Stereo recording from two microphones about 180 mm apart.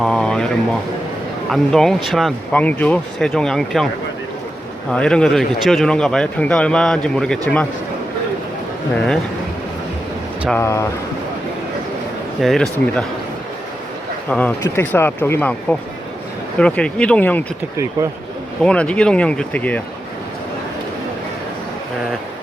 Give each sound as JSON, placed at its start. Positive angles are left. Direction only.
{"t": 0.0, "sound": "a sound", "side_deg": 5}
{"t": 1.5, "sound": "speech", "side_deg": 0}
{"t": 4.9, "sound": "speech", "side_deg": 5}
{"t": 10.5, "sound": "speech", "side_deg": 15}
{"t": 12.4, "sound": "speech", "side_deg": 0}
{"t": 14.3, "sound": "speech", "side_deg": 5}
{"t": 18.6, "sound": "speech", "side_deg": 5}